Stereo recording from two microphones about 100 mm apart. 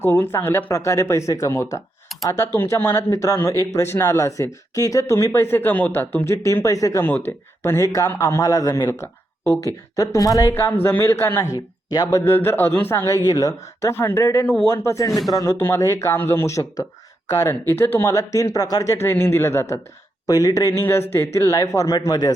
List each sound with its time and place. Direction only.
0.0 s a man's voice: 20° left (ahead or behind)
7.0 s a man's voice: 20° left (ahead or behind); by 8.9 s 40° left (ahead or behind)
8.9 s speech: 20° left (ahead or behind)
10.5 s speech: 25° left (ahead or behind)
11.5 s speech: 40° left (ahead or behind)
12.2 s speech: 25° left (ahead or behind)
13.1 s a man's voice: 35° left (ahead or behind)
13.9 s a man's voice: 25° left (ahead or behind); by 15.5 s 40° left (ahead or behind)
15.5 s speech: 25° left (ahead or behind)
18.1 s a man's voice: 35° left (ahead or behind)
19.0 s speech: 20° left (ahead or behind)
20.2 s a man's voice: 40° left (ahead or behind)